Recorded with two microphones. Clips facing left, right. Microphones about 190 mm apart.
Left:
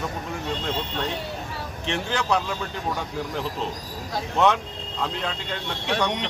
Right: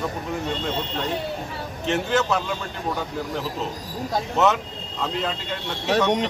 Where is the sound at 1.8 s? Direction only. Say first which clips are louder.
Right 5 dB; centre (ahead or behind).